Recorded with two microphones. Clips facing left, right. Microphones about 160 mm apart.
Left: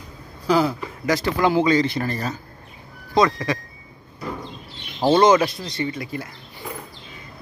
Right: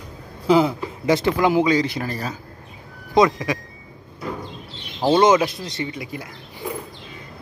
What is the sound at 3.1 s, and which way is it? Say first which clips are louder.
Speech: right 2 dB; 15° right (ahead or behind).